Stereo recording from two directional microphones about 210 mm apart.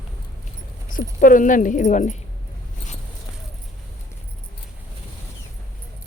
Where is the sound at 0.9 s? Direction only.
40° left (ahead or behind).